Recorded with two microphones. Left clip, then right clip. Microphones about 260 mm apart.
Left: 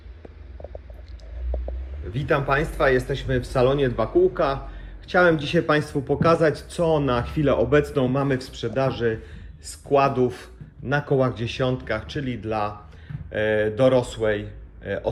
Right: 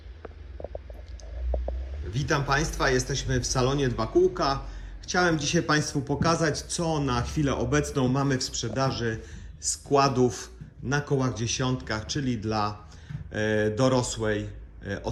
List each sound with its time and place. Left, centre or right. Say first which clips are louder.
2.1 s a man's voice: left 4 dB; centre